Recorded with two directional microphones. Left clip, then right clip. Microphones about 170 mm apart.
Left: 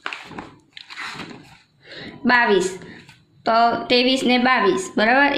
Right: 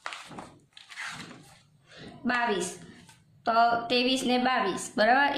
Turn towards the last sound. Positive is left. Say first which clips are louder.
# left 6 dB
turn(degrees=10)  # may be behind; listen again after turning